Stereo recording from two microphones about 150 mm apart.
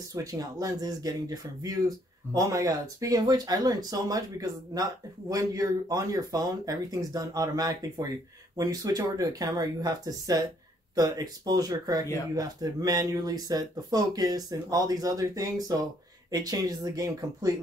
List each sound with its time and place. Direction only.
0.1 s speech: 20° right (ahead or behind)